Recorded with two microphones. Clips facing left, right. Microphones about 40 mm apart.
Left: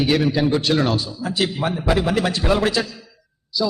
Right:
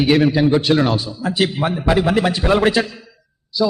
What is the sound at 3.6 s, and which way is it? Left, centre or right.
Speech, centre.